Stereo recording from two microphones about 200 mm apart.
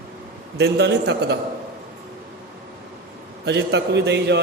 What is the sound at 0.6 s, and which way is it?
Speech, 55° right (ahead or behind).